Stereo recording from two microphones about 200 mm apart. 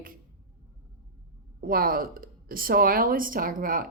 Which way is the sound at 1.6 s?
45° right (ahead or behind).